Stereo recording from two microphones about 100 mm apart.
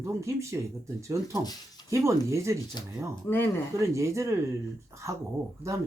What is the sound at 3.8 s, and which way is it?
Speech, 30° right (ahead or behind).